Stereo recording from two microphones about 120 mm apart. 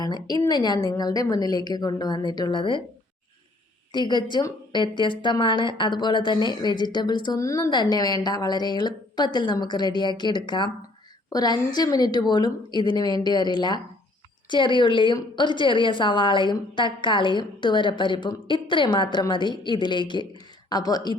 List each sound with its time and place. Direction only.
0.0 s speech: 35° left (ahead or behind)
3.9 s speech: 40° left (ahead or behind)